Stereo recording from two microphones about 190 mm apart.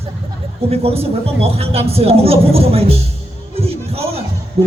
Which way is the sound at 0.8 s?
30° right (ahead or behind).